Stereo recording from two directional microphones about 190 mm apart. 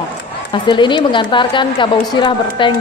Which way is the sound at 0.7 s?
25° left (ahead or behind).